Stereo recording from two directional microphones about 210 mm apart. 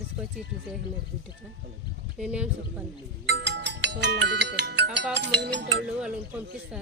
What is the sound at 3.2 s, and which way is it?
Speech, 55° right (ahead or behind).